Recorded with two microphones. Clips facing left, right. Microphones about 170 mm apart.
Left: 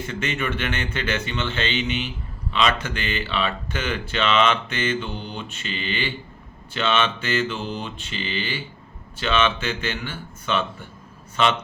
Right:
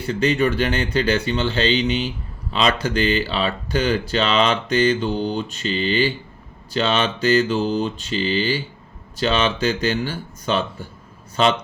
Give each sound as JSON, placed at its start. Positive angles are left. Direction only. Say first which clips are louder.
{"t": 0.0, "sound": "speech", "louder": "right 8 dB", "side_deg": -35}